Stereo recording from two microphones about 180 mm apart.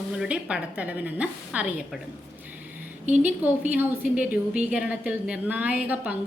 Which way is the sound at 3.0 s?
40° right (ahead or behind).